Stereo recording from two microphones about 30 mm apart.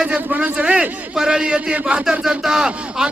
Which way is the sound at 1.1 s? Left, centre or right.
Right.